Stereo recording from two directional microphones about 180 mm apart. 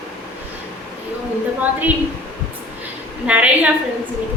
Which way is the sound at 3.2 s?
5° right (ahead or behind).